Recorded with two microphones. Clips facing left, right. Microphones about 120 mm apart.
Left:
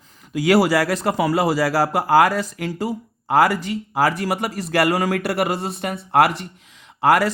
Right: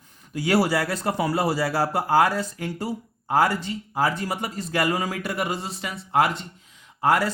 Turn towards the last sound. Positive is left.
turn(degrees=90)